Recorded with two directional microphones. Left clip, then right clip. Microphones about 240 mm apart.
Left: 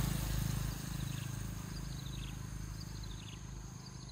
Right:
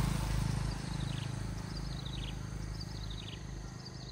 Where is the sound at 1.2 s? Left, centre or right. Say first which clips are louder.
Right 3 dB; left.